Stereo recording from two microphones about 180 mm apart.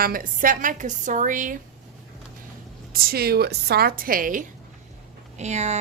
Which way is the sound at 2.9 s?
60° right (ahead or behind).